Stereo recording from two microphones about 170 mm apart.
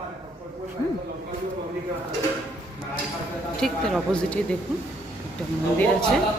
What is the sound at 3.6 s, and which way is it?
Speech, 5° left (ahead or behind).